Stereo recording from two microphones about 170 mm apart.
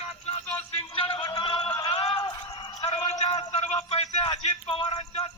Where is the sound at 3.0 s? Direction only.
35° left (ahead or behind).